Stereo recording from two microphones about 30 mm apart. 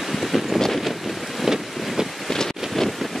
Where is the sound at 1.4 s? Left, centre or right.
Centre.